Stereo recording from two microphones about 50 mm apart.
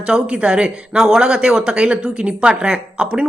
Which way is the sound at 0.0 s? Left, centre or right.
Right.